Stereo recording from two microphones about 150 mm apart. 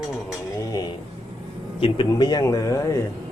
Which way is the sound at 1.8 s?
35° left (ahead or behind).